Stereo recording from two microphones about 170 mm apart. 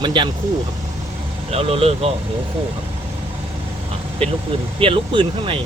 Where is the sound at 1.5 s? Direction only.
35° right (ahead or behind).